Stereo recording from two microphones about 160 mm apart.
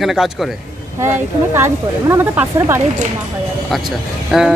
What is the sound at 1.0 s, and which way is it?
Speech, 15° right (ahead or behind).